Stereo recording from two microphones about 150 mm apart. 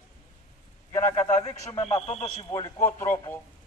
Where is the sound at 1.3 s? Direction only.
50° left (ahead or behind).